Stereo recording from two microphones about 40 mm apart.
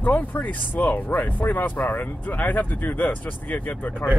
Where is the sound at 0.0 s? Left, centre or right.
Left.